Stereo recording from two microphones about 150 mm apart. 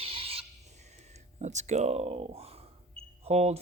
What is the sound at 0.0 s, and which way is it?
Owl, 40° right (ahead or behind).